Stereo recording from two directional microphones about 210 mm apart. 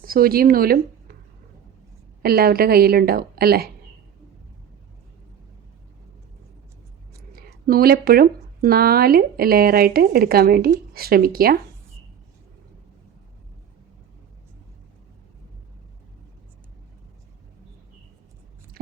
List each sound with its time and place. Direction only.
0.0 s speech: 45° right (ahead or behind)
2.2 s speech: 45° right (ahead or behind)
7.3 s speech: 45° right (ahead or behind)